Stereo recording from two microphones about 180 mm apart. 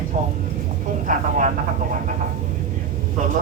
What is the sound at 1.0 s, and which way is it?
Vehicle, 45° right (ahead or behind).